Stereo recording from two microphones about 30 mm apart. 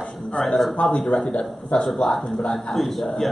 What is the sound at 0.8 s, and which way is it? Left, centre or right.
Speech, left.